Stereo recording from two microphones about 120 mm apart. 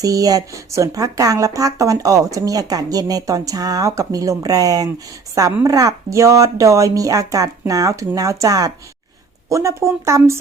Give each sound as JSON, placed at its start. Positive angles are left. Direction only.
{"t": 0.0, "sound": "a woman's voice", "side_deg": -30}